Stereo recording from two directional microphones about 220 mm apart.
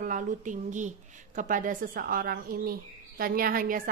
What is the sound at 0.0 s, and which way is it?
Speech, 35° right (ahead or behind).